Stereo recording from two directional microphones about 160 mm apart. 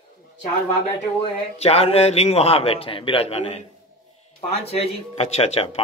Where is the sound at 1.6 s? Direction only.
40° left (ahead or behind).